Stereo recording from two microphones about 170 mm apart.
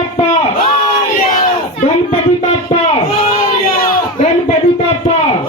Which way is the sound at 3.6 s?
55° left (ahead or behind).